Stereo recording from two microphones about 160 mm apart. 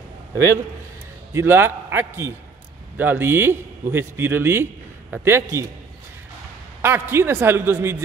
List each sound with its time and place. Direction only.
1.3 s a man's voice: 15° right (ahead or behind)
6.8 s a man's voice: 15° right (ahead or behind)